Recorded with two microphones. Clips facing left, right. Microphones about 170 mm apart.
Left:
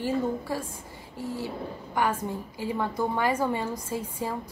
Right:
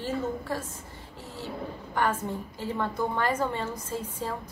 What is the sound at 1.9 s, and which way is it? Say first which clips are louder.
A woman's voice: left 1 dB; 10° left (ahead or behind).